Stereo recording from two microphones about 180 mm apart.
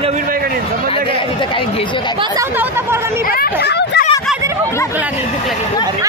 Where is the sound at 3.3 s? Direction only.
60° left (ahead or behind).